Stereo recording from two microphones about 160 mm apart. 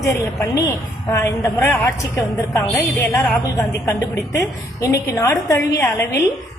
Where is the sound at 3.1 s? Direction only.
20° left (ahead or behind).